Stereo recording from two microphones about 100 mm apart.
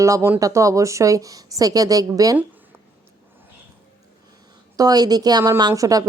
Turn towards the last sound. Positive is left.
turn(degrees=-35)  # may be behind; listen again after turning